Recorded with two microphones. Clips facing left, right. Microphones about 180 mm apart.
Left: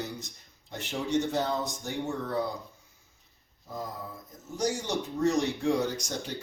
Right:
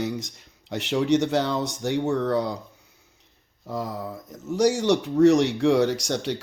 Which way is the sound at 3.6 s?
75° right (ahead or behind).